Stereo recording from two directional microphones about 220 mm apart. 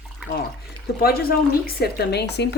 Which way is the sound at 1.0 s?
45° left (ahead or behind).